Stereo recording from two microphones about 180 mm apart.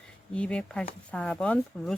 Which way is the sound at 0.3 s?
5° left (ahead or behind).